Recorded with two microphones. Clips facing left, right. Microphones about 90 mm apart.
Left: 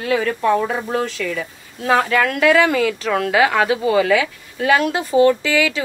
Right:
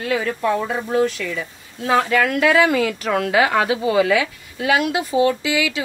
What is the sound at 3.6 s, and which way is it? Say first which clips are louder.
A woman's voice: left 1 dB; 45° left (ahead or behind).